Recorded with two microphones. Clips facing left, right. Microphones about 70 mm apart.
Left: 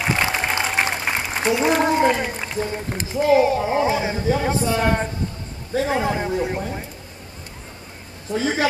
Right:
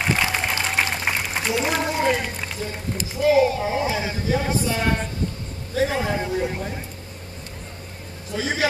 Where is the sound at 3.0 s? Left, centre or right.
Left.